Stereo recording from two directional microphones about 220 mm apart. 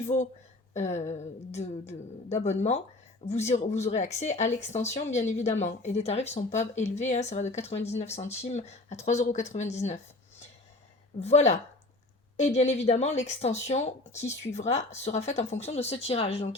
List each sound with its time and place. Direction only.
0.0 s speech: 30° left (ahead or behind)
11.2 s speech: 30° left (ahead or behind)